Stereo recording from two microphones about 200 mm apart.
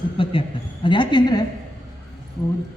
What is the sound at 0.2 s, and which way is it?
A man's voice, 25° left (ahead or behind).